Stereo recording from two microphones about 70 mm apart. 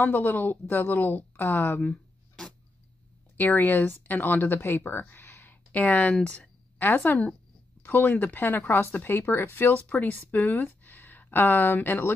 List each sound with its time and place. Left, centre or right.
0.0 s a woman's voice: left
3.5 s a woman's voice: left
5.0 s a sound: left
6.1 s a woman's voice: centre; by 12.1 s left